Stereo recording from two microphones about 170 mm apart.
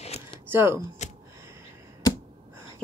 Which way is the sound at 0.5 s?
15° right (ahead or behind).